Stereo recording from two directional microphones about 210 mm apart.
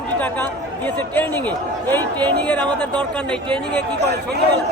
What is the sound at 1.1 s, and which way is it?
Speech, 10° left (ahead or behind).